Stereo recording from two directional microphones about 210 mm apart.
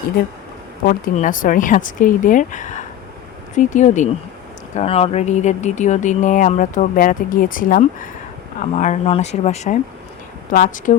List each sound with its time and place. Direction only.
0.9 s speech: 40° left (ahead or behind)
10.5 s speech: 45° left (ahead or behind)